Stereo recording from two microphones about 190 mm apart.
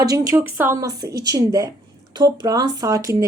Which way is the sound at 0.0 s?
20° right (ahead or behind).